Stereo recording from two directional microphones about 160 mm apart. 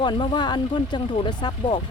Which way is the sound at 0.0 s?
30° left (ahead or behind).